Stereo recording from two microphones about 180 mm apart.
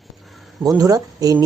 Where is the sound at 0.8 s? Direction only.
20° right (ahead or behind).